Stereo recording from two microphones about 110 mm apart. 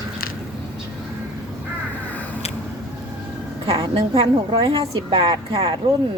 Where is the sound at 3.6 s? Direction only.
60° right (ahead or behind).